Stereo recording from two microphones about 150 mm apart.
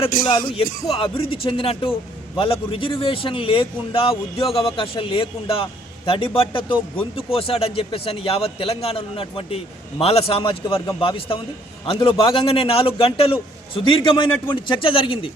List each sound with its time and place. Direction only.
0.3 s speech: 35° left (ahead or behind)